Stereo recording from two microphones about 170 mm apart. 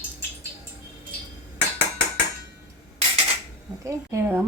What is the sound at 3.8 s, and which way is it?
Speech, 15° right (ahead or behind).